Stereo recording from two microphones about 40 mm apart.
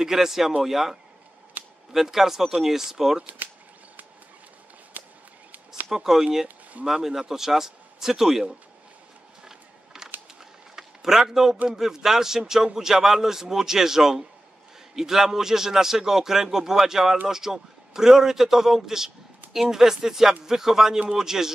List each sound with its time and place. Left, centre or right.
0.0 s a man's voice: centre
1.6 s cap gun: right
1.9 s a man's voice: centre
3.4 s a sound: right
4.9 s walk: right
5.9 s a man's voice: centre
10.8 s a sound: centre
11.7 s a man's voice: centre